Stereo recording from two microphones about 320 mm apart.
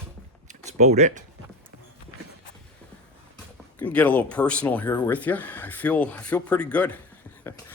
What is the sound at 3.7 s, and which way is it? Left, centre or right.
Speech, centre.